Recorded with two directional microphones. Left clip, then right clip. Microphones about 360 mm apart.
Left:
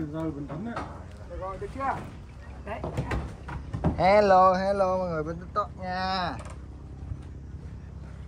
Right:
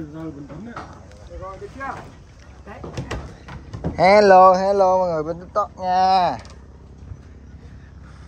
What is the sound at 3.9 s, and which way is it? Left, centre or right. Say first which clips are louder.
Speech: right 8 dB; right.